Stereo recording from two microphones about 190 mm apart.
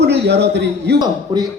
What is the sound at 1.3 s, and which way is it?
Speech, 20° right (ahead or behind).